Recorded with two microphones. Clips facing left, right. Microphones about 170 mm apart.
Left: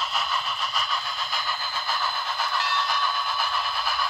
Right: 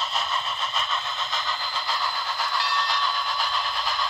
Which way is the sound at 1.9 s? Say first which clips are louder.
Left 1 dB; 15° right (ahead or behind).